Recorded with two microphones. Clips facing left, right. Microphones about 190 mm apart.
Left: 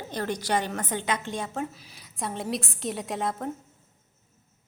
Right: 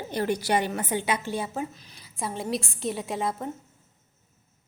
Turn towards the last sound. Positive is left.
turn(degrees=0)  # may be behind; listen again after turning